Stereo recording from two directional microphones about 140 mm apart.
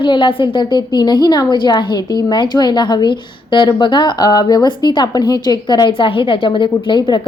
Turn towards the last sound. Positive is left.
turn(degrees=35)  # may be behind; listen again after turning